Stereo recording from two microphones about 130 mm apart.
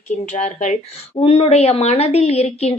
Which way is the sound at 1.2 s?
50° left (ahead or behind).